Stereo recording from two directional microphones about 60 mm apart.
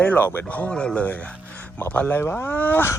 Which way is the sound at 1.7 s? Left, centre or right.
Left.